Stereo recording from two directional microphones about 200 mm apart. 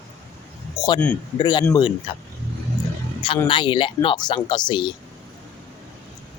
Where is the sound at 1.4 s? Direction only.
20° left (ahead or behind).